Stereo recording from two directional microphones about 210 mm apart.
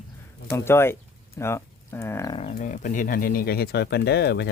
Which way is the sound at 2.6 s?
40° left (ahead or behind).